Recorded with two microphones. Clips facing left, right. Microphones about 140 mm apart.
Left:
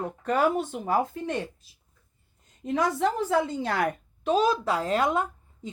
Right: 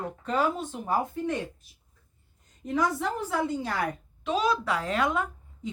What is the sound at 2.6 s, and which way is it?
A woman's voice, 90° left.